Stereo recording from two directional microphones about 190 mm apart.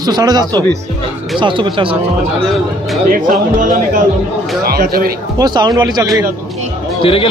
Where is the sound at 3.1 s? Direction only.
45° right (ahead or behind).